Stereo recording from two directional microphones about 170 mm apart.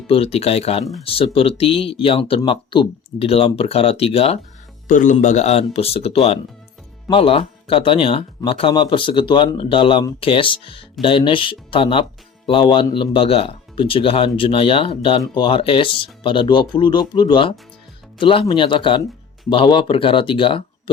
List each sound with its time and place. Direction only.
0.1 s speech: 35° left (ahead or behind)
4.9 s speech: 50° left (ahead or behind); by 20.9 s 30° left (ahead or behind)